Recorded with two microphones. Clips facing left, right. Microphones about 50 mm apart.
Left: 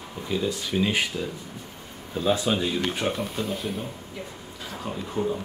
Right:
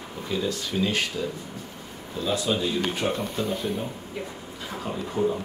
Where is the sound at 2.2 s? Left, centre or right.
Left.